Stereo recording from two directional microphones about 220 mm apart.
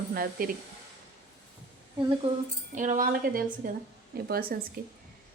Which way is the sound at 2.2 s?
25° right (ahead or behind).